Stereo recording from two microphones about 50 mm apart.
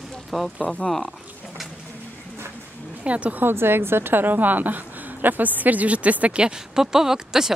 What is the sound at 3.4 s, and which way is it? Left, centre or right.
A woman's voice, right.